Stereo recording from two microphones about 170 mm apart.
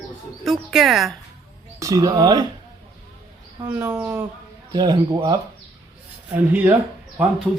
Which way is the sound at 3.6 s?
10° right (ahead or behind).